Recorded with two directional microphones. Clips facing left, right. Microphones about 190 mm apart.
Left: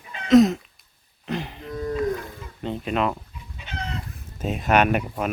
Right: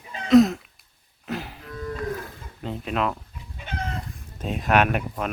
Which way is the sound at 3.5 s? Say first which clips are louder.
Right 2 dB; 50° right (ahead or behind).